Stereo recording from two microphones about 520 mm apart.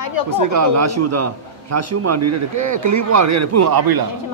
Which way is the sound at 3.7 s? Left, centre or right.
Right.